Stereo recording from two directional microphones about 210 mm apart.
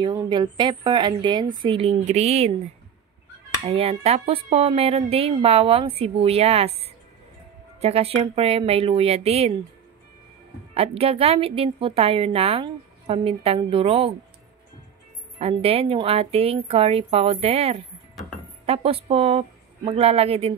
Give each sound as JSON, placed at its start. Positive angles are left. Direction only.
{"t": 0.0, "sound": "a woman's voice", "side_deg": -20}
{"t": 3.6, "sound": "a woman's voice", "side_deg": -30}
{"t": 10.7, "sound": "a woman's voice", "side_deg": -30}
{"t": 15.3, "sound": "a woman's voice", "side_deg": -30}